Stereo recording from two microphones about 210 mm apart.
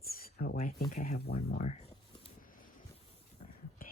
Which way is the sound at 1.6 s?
30° left (ahead or behind).